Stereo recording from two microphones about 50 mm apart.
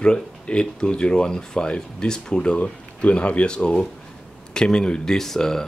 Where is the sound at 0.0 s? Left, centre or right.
Centre.